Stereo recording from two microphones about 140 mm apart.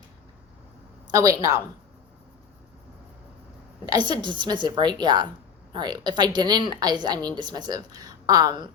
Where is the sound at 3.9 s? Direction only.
30° right (ahead or behind).